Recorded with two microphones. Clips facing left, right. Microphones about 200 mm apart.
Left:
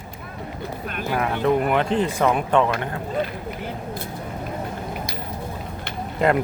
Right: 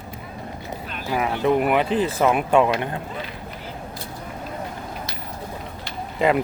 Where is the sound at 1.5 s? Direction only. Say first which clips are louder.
Right 1 dB; 5° right (ahead or behind).